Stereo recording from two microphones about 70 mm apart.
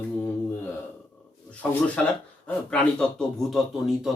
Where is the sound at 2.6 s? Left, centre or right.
Centre.